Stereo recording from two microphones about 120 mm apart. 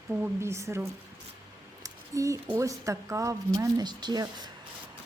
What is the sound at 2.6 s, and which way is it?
Speech, 25° right (ahead or behind).